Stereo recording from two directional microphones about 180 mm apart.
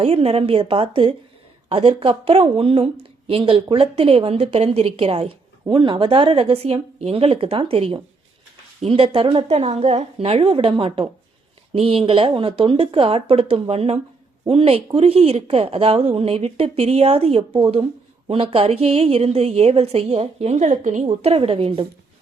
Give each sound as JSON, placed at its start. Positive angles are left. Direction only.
{"t": 0.0, "sound": "speech", "side_deg": -35}
{"t": 21.1, "sound": "speech", "side_deg": -30}